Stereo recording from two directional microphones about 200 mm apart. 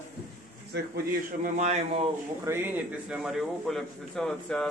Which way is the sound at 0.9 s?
45° right (ahead or behind).